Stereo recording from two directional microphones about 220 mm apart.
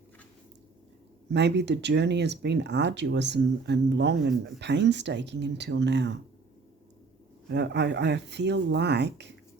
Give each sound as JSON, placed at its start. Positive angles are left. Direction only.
{"t": 1.3, "sound": "speech", "side_deg": -50}
{"t": 7.4, "sound": "speech", "side_deg": -50}